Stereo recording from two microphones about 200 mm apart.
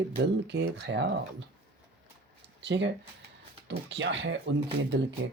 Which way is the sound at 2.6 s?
60° right (ahead or behind).